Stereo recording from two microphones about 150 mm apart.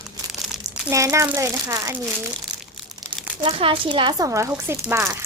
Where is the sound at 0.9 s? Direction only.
20° right (ahead or behind).